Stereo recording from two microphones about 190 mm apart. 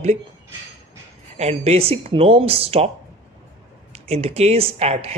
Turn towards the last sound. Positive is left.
turn(degrees=-35)  # may be behind; listen again after turning